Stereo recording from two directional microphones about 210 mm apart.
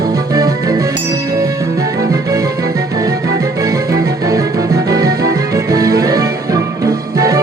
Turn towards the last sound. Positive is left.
turn(degrees=-15)  # may be behind; listen again after turning